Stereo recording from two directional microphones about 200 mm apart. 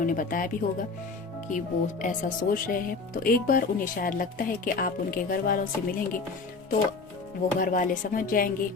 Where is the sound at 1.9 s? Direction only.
40° left (ahead or behind).